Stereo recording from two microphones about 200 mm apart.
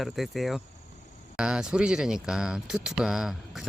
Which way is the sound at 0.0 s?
Centre (ahead or behind).